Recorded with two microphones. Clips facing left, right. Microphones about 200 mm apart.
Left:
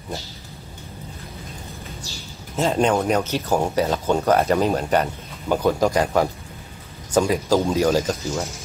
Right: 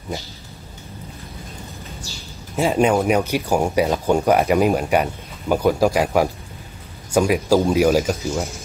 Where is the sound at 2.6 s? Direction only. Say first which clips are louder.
Right 2 dB; 10° right (ahead or behind).